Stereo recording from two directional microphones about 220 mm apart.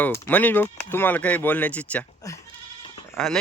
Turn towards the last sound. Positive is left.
turn(degrees=5)  # may be behind; listen again after turning